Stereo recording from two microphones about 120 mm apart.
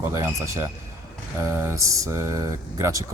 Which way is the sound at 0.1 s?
25° right (ahead or behind).